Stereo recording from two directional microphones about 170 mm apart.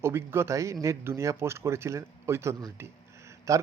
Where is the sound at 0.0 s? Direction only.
15° right (ahead or behind).